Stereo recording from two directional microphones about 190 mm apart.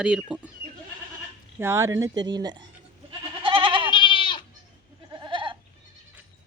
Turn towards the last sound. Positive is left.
turn(degrees=-25)  # may be behind; listen again after turning